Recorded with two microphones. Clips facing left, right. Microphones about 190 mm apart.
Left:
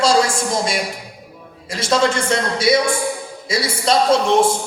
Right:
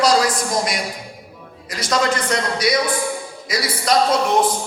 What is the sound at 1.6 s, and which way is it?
A man's voice, 25° left (ahead or behind).